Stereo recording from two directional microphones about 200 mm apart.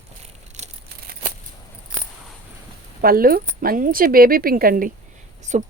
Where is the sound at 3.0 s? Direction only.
45° right (ahead or behind).